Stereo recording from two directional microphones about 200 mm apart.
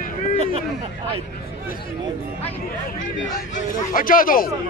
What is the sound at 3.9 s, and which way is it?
Speech, 45° left (ahead or behind).